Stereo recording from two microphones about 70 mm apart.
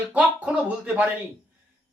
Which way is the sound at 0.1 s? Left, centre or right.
Centre.